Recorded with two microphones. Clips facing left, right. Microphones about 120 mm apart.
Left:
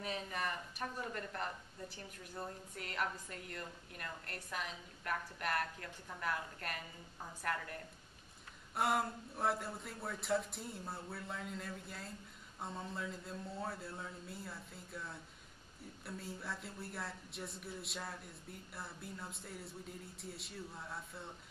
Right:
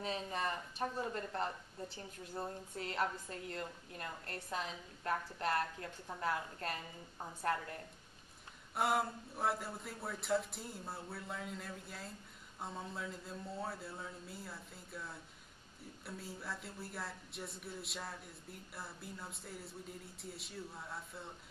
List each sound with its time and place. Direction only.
0.0 s speech: 25° right (ahead or behind)
8.7 s speech: centre (ahead or behind)